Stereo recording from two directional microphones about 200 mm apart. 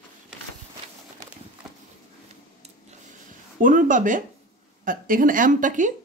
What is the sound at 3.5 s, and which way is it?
A woman's voice, 40° right (ahead or behind).